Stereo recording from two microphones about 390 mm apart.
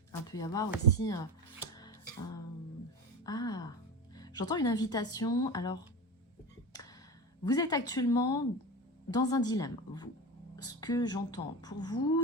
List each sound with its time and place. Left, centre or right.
0.1 s speech: centre
1.7 s music: centre
3.2 s speech: centre
7.4 s speech: centre